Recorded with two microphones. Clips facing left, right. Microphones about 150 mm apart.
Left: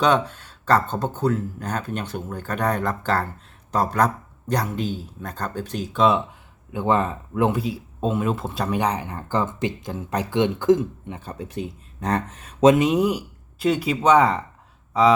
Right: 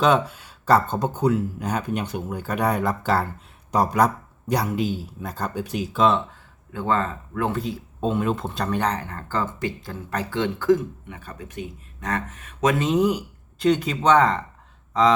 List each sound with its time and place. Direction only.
0.0 s speech: 5° right (ahead or behind)
6.7 s speech: 15° left (ahead or behind)
7.6 s speech: 5° left (ahead or behind); by 12.7 s 30° left (ahead or behind)
12.7 s speech: 10° left (ahead or behind)